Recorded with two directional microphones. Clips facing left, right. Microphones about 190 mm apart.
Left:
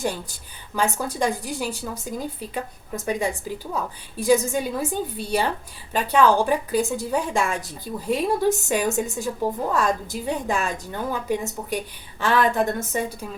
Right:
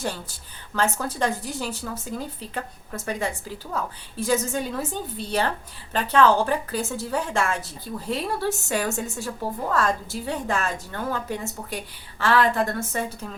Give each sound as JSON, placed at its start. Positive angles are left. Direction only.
{"t": 0.0, "sound": "a woman's voice", "side_deg": 15}